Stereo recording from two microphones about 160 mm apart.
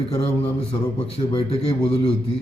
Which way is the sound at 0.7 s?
40° left (ahead or behind).